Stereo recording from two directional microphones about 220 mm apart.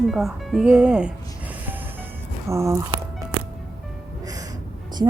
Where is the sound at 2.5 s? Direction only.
15° right (ahead or behind).